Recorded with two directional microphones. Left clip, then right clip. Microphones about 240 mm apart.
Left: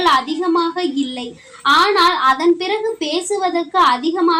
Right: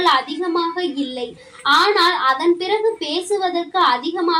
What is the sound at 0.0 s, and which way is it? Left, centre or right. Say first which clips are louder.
A woman's voice: left 2 dB; left.